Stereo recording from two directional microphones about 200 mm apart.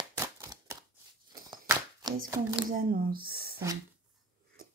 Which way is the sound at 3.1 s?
50° right (ahead or behind).